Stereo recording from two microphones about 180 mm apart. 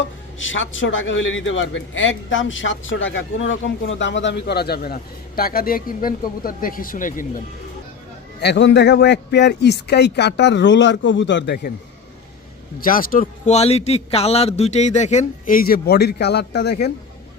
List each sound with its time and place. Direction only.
0.3 s a man's voice: 90° left; by 7.4 s 50° left (ahead or behind)
8.4 s speech: 75° left (ahead or behind)
12.8 s speech: 50° left (ahead or behind)
13.5 s speech: 35° left (ahead or behind); by 16.7 s 65° left (ahead or behind)